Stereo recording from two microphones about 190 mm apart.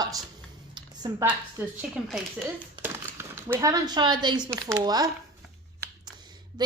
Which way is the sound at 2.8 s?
10° right (ahead or behind).